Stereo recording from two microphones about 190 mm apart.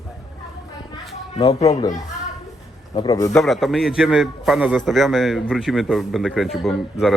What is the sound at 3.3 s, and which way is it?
A man's voice, centre (ahead or behind).